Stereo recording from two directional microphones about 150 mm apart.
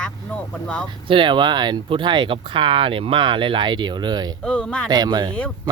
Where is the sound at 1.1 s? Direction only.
35° right (ahead or behind).